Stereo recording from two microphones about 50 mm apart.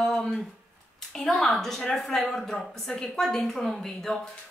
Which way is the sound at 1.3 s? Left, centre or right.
Centre.